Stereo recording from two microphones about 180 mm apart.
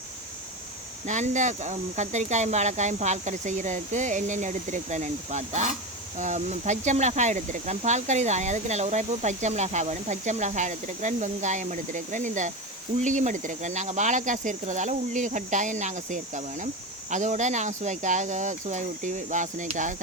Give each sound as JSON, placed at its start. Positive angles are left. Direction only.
{"t": 1.0, "sound": "speech", "side_deg": -40}